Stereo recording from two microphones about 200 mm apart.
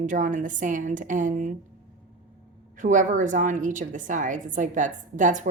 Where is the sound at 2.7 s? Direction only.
40° right (ahead or behind).